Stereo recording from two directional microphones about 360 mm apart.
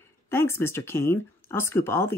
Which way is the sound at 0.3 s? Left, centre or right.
Centre.